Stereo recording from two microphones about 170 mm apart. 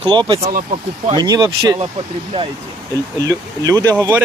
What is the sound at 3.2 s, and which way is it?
Speech, 20° right (ahead or behind).